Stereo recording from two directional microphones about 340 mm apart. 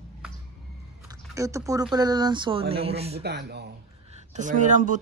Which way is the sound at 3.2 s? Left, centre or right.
Right.